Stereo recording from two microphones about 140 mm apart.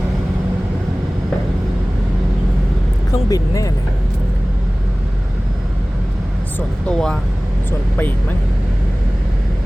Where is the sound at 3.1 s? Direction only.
25° left (ahead or behind).